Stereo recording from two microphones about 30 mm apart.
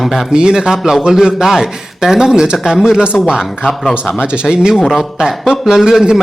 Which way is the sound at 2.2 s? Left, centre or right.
Right.